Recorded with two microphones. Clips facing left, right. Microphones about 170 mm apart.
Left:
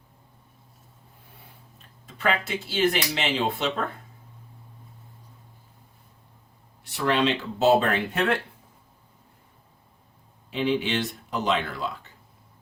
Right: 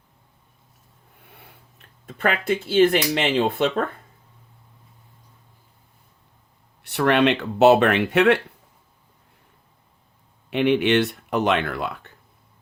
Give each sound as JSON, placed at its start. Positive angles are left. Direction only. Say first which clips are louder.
{"t": 2.0, "sound": "speech", "louder": "right 4 dB", "side_deg": -55}
{"t": 6.8, "sound": "speech", "louder": "right 5 dB", "side_deg": -65}
{"t": 10.5, "sound": "speech", "louder": "right 7 dB", "side_deg": -70}